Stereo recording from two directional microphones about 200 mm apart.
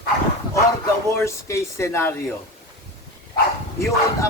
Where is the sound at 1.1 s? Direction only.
15° left (ahead or behind).